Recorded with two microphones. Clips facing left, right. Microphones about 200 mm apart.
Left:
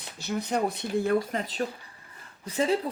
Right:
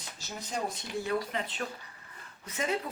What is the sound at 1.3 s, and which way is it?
Speech, 40° left (ahead or behind).